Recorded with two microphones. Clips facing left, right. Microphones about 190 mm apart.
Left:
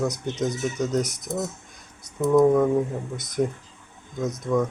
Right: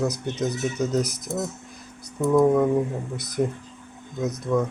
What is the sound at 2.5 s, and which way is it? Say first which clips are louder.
Speech: even; 5° right (ahead or behind).